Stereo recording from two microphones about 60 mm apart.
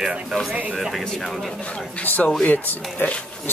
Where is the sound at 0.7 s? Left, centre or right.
Centre.